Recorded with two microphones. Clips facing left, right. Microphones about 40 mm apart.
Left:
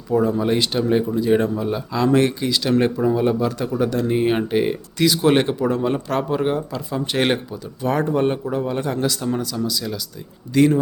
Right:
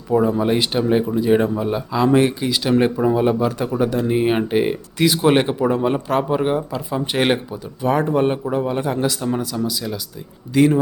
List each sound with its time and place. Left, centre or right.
0.1 s speech: centre